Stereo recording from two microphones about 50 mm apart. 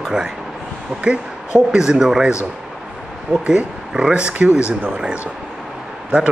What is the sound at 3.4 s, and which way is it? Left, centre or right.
Speech, centre.